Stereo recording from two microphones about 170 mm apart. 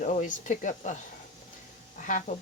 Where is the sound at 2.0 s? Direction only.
50° left (ahead or behind).